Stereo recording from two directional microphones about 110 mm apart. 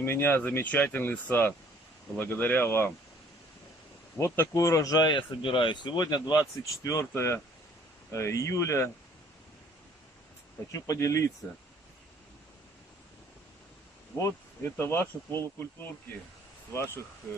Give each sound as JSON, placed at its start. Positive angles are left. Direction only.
{"t": 0.0, "sound": "speech", "side_deg": 20}
{"t": 4.2, "sound": "speech", "side_deg": 25}
{"t": 10.7, "sound": "speech", "side_deg": 30}
{"t": 14.1, "sound": "speech", "side_deg": 25}